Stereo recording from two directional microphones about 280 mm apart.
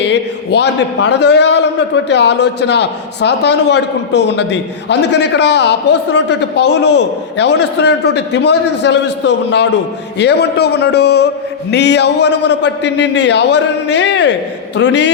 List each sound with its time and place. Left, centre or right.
0.0 s a man's voice: left